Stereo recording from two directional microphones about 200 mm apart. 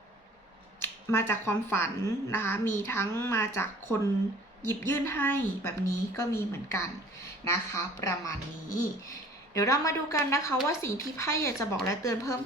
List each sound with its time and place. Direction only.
0.8 s speech: 10° left (ahead or behind)
9.6 s speech: 15° left (ahead or behind)